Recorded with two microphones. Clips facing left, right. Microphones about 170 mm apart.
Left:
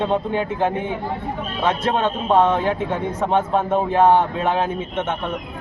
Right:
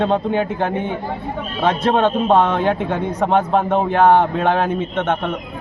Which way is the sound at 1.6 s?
65° right (ahead or behind).